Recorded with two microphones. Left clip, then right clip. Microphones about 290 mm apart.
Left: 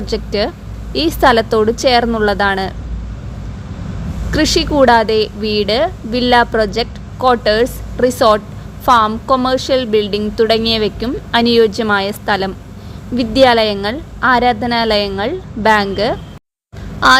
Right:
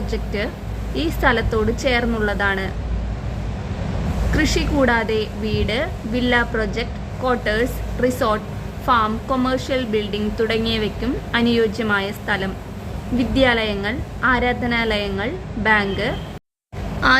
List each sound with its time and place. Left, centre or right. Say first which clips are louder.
0.1 s speech: left 9 dB; left
4.3 s speech: left 7 dB; left